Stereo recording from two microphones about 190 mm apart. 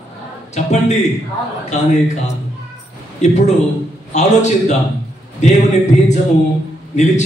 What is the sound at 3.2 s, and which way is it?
A man's voice, 35° left (ahead or behind).